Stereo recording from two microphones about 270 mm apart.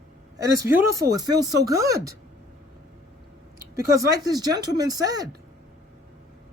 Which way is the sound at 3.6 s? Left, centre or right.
Centre.